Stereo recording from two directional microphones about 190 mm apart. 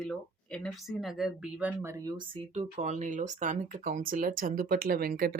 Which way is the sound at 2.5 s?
35° right (ahead or behind).